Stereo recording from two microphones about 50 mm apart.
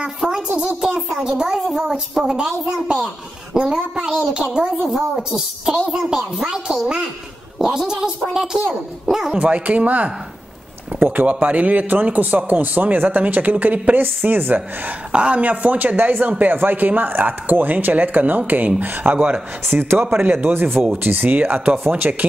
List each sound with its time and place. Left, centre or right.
0.0 s a child's voice: centre
4.8 s a child's voice: centre
9.3 s speech: right
15.1 s speech: right
19.6 s speech: right